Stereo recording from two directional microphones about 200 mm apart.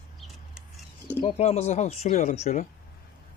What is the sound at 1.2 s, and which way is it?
Speech, 30° left (ahead or behind).